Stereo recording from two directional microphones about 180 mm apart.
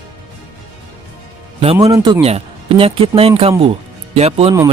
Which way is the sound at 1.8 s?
20° right (ahead or behind).